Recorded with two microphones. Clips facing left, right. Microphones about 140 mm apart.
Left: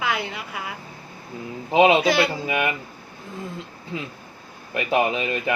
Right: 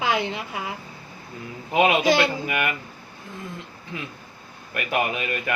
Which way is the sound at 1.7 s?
25° left (ahead or behind).